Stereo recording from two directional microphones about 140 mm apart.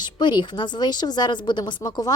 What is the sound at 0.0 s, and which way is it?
A woman's voice, 35° left (ahead or behind).